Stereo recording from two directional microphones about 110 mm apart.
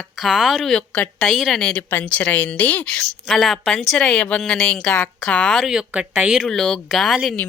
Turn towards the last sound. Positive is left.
turn(degrees=5)  # may be behind; listen again after turning